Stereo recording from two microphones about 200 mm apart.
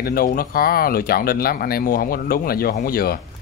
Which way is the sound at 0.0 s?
50° left (ahead or behind).